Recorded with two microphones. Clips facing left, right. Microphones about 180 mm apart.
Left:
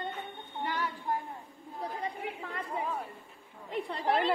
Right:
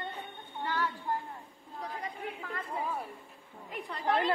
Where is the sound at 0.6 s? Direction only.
15° left (ahead or behind).